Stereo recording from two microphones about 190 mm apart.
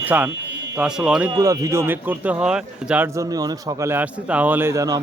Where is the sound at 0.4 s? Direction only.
65° right (ahead or behind).